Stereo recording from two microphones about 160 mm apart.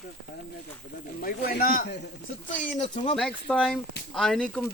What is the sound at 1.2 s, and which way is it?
Speech, 65° left (ahead or behind).